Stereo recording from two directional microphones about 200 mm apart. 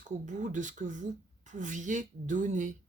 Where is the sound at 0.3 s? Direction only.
40° right (ahead or behind).